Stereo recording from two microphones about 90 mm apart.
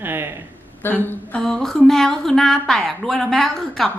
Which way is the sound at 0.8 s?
20° left (ahead or behind).